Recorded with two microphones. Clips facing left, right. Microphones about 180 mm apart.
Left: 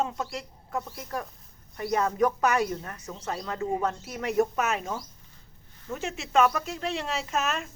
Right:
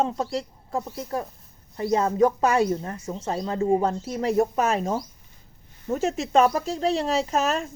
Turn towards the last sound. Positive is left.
turn(degrees=-35)  # may be behind; listen again after turning